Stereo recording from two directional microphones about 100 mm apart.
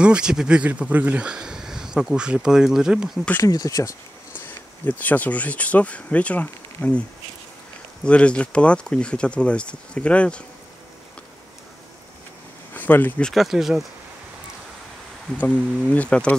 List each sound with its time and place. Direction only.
0.0 s speech: 10° right (ahead or behind)
3.4 s speech: 35° left (ahead or behind)
4.4 s speech: 15° left (ahead or behind)
8.0 s speech: 10° left (ahead or behind)
12.7 s speech: 20° left (ahead or behind)
13.2 s speech: centre (ahead or behind)
15.3 s speech: 10° left (ahead or behind)